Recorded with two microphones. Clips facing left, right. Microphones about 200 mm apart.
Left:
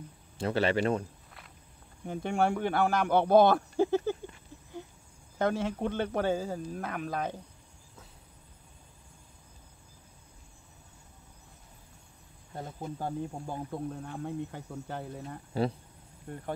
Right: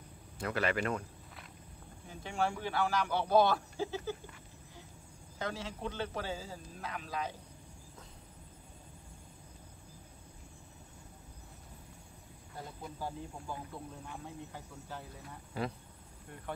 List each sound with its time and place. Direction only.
0.4 s speech: 30° left (ahead or behind)
2.0 s speech: 60° left (ahead or behind)
5.4 s speech: 55° left (ahead or behind)
13.0 s speech: 50° left (ahead or behind)
15.2 s speech: 30° left (ahead or behind)
16.3 s speech: 50° left (ahead or behind)